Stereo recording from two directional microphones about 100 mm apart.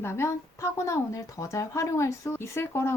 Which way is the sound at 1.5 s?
30° left (ahead or behind).